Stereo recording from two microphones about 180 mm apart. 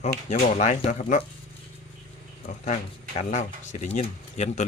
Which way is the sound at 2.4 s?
40° left (ahead or behind).